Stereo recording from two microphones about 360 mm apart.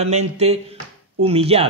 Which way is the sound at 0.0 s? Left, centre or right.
Centre.